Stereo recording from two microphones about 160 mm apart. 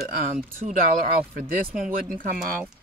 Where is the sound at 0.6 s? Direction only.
55° right (ahead or behind).